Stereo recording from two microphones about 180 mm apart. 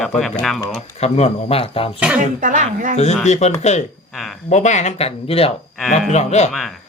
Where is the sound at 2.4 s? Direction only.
45° right (ahead or behind).